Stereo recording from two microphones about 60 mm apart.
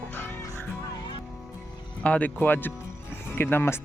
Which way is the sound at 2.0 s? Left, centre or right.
Left.